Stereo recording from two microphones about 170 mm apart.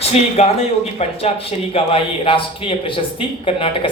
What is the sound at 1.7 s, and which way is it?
Speech, 30° left (ahead or behind).